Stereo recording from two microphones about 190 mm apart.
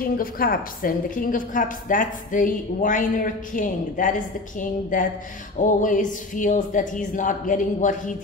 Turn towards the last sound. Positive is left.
turn(degrees=40)  # may be behind; listen again after turning